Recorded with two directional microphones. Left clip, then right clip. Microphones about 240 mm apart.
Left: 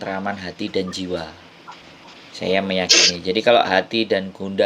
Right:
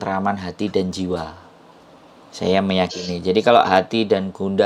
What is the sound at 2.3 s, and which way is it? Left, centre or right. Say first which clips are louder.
Speech: right 2 dB; centre.